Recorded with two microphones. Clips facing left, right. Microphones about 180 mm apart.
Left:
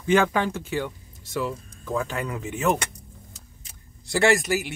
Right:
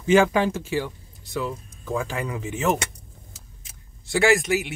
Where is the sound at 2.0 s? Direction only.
15° right (ahead or behind).